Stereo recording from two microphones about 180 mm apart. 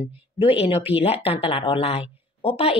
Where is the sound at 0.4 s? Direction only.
30° left (ahead or behind).